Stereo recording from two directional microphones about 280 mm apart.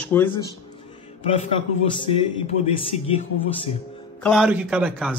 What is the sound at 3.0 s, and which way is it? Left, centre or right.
Speech, left.